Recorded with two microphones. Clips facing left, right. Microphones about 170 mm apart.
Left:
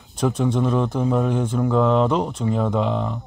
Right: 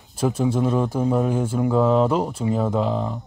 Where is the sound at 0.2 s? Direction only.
5° right (ahead or behind).